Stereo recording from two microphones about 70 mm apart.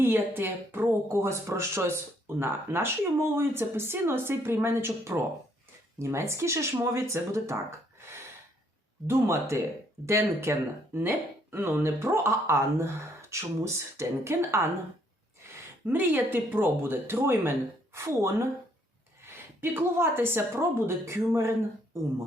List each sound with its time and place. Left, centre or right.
0.0 s a woman's voice: right
9.0 s a woman's voice: right
15.9 s a woman's voice: right
19.7 s a woman's voice: right